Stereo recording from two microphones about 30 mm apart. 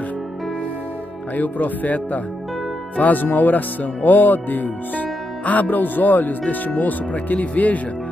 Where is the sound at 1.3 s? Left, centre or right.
Left.